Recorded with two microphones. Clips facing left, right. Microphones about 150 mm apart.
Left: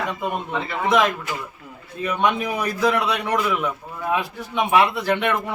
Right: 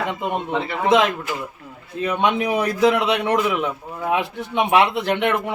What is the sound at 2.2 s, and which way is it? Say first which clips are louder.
A man's voice: right 2 dB; 20° right (ahead or behind).